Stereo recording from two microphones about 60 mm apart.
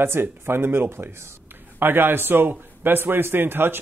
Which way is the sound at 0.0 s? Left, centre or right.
Right.